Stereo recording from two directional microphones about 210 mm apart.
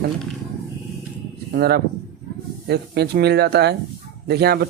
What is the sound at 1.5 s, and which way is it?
Speech, 50° right (ahead or behind).